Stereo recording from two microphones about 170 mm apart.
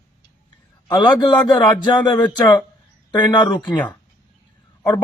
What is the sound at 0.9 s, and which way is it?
Speech, 25° left (ahead or behind).